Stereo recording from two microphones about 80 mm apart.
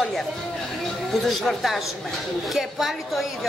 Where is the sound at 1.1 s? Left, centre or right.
Centre.